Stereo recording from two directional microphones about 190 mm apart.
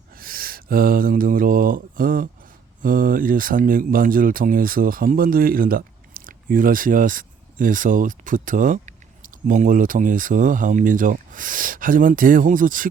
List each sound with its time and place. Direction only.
0.1 s speech: 50° right (ahead or behind)